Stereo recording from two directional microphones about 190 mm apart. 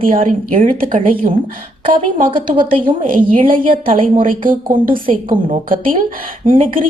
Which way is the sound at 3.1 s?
45° right (ahead or behind).